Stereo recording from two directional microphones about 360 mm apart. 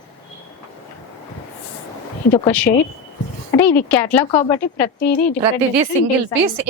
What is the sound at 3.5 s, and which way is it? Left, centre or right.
A woman's voice, centre.